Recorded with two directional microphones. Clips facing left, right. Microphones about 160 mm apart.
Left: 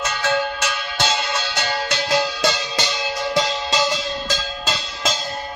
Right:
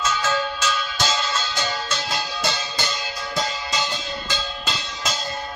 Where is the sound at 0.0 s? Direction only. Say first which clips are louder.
Left 2 dB; 60° left (ahead or behind).